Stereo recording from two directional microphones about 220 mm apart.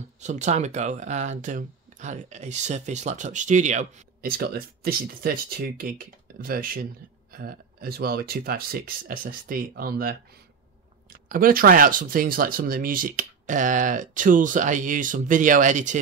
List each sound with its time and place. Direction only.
0.2 s speech: 30° right (ahead or behind)
11.2 s speech: 40° right (ahead or behind)